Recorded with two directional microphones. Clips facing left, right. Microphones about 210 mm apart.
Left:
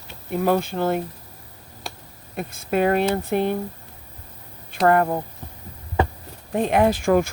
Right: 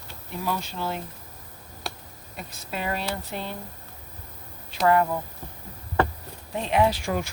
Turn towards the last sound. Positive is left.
turn(degrees=50)  # may be behind; listen again after turning